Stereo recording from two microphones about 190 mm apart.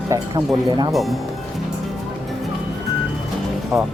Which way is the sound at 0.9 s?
Centre (ahead or behind).